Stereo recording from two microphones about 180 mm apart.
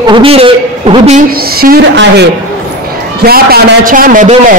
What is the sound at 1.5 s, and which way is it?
Speech, 60° right (ahead or behind).